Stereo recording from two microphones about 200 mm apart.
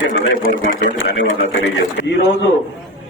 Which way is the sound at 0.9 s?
70° left (ahead or behind).